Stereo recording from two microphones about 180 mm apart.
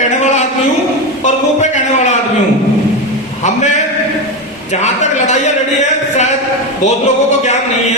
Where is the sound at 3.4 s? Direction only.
40° left (ahead or behind).